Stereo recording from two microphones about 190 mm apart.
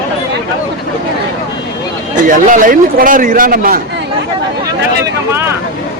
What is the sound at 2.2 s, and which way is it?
A man's voice, 45° right (ahead or behind).